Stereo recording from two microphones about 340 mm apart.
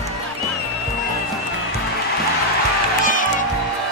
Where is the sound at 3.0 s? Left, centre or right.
Left.